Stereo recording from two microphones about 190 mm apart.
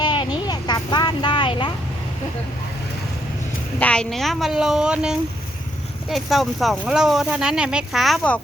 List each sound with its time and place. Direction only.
0.0 s vehicle: 20° left (ahead or behind)
3.8 s speech: 5° left (ahead or behind)